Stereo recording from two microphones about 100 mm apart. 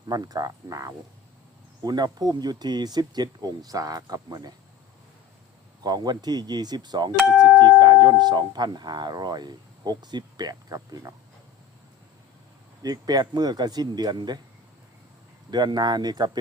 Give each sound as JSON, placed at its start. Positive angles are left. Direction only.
{"t": 0.1, "sound": "speech", "side_deg": -40}
{"t": 5.8, "sound": "speech", "side_deg": -45}
{"t": 12.8, "sound": "speech", "side_deg": -40}
{"t": 15.4, "sound": "speech", "side_deg": -45}